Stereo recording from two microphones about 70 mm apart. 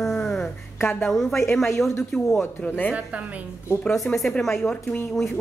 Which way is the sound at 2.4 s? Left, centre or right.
Left.